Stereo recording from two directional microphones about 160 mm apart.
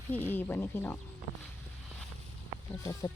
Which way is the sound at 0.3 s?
10° left (ahead or behind).